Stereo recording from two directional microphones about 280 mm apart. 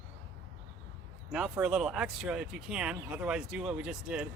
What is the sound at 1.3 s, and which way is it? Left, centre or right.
Speech, centre.